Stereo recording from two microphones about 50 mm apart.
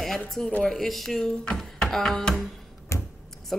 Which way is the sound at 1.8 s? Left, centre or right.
Centre.